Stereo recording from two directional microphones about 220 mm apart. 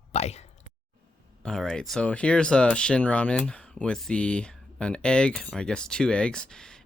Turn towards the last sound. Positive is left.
turn(degrees=5)  # may be behind; listen again after turning